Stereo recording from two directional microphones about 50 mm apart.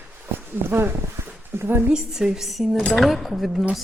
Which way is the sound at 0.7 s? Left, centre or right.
Right.